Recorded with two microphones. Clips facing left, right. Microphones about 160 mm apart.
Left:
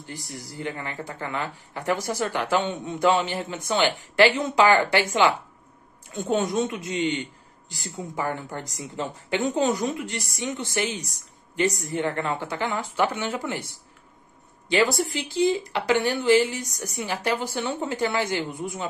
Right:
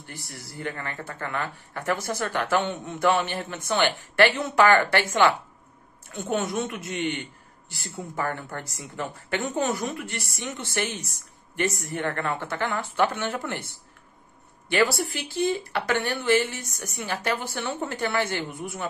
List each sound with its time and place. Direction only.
0.0 s speech: 15° left (ahead or behind)
14.7 s speech: 20° left (ahead or behind)